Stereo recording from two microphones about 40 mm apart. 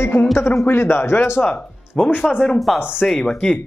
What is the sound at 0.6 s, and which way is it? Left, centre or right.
Speech, left.